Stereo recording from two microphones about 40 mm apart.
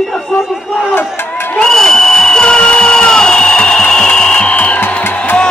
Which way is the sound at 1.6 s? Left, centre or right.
Centre.